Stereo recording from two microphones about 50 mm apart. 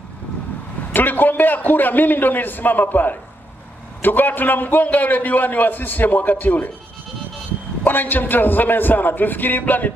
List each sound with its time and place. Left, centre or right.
0.9 s a man's voice: left
7.8 s a man's voice: left